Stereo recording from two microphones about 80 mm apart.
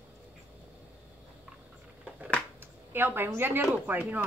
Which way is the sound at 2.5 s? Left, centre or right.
Right.